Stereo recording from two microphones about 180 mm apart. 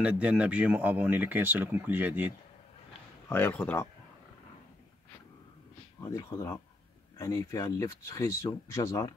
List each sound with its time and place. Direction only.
0.0 s speech: 5° right (ahead or behind)
3.3 s speech: 10° left (ahead or behind)
5.9 s speech: 20° left (ahead or behind)